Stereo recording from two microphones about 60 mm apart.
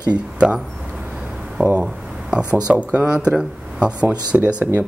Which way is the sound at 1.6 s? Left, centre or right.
Centre.